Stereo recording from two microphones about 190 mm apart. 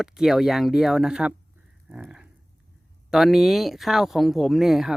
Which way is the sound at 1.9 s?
5° right (ahead or behind).